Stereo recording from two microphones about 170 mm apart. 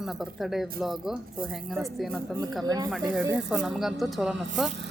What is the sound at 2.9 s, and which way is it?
A man's voice, centre (ahead or behind).